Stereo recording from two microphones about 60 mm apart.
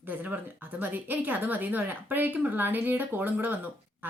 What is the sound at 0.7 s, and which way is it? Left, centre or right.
A woman's voice, right.